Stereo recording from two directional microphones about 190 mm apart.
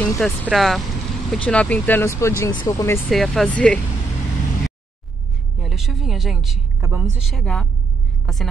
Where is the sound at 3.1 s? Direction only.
Centre (ahead or behind).